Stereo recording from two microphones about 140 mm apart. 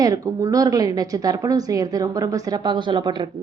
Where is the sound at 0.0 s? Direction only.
25° right (ahead or behind).